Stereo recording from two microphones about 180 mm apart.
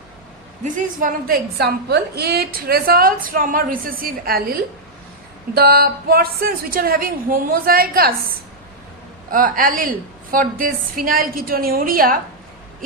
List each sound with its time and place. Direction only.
0.6 s a woman's voice: 50° right (ahead or behind)
5.5 s speech: 60° right (ahead or behind)
9.3 s a woman's voice: 50° right (ahead or behind)